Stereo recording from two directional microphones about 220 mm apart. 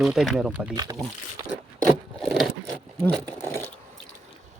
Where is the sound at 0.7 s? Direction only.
15° right (ahead or behind).